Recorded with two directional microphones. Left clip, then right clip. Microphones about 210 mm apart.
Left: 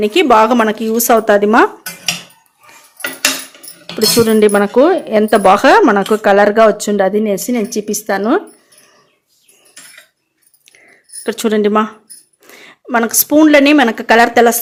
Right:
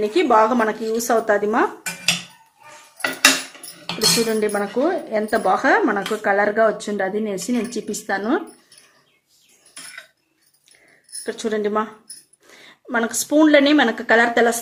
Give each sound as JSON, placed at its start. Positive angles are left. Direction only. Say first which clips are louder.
{"t": 0.0, "sound": "speech", "louder": "left 6 dB", "side_deg": 45}
{"t": 4.3, "sound": "speech", "louder": "left 11 dB", "side_deg": 50}
{"t": 11.2, "sound": "a woman's voice", "louder": "left 9 dB", "side_deg": 45}